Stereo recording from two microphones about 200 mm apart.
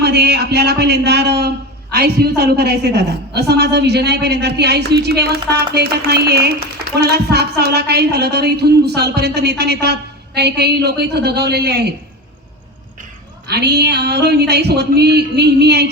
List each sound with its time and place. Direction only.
0.0 s speech: 55° right (ahead or behind)
13.5 s speech: 55° right (ahead or behind)